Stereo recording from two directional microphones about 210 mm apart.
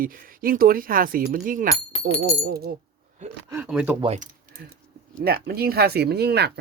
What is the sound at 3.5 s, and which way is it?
Speech, 5° right (ahead or behind).